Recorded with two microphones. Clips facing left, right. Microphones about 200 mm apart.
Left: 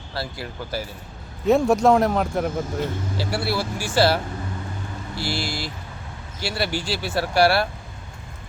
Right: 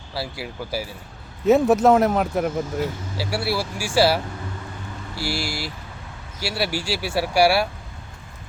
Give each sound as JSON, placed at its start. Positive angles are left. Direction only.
{"t": 0.1, "sound": "speech", "side_deg": -10}